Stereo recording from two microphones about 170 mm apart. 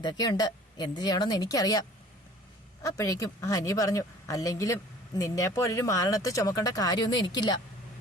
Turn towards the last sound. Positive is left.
turn(degrees=25)  # may be behind; listen again after turning